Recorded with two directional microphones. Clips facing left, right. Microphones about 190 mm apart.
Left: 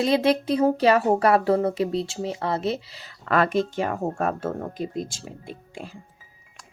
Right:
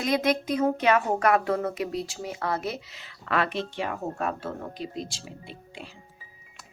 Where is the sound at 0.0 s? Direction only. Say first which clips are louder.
Left 4 dB; 30° left (ahead or behind); by 6.0 s 45° left (ahead or behind).